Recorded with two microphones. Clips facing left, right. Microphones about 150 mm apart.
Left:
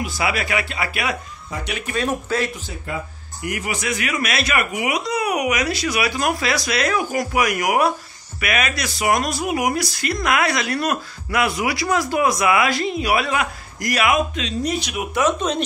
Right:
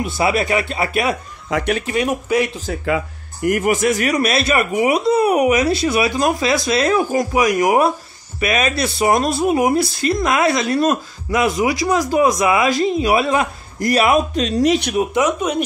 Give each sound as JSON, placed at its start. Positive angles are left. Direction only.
{"t": 0.2, "sound": "speech", "side_deg": -25}
{"t": 1.5, "sound": "speech", "side_deg": -90}
{"t": 1.9, "sound": "speech", "side_deg": -15}
{"t": 3.4, "sound": "speech", "side_deg": -50}
{"t": 14.5, "sound": "speech", "side_deg": -80}
{"t": 15.2, "sound": "speech", "side_deg": -10}